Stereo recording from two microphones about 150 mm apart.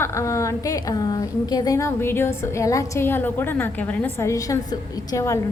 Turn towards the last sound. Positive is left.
turn(degrees=20)  # may be behind; listen again after turning